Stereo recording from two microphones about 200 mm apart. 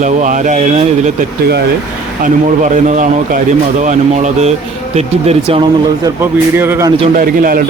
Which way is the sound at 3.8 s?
35° right (ahead or behind).